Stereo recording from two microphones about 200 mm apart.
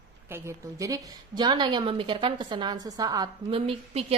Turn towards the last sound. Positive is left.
turn(degrees=-30)  # may be behind; listen again after turning